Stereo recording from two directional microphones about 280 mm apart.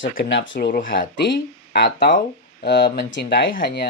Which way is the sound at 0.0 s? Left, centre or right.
Left.